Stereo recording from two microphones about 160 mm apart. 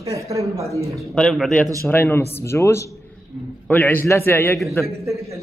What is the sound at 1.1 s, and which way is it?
Speech, 5° left (ahead or behind).